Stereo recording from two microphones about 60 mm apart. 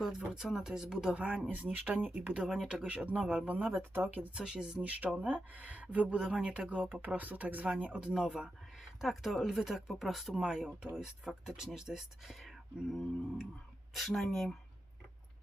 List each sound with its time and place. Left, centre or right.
0.3 s speech: centre; by 3.7 s right
3.8 s speech: right
4.4 s speech: centre
4.8 s speech: right
8.1 s speech: centre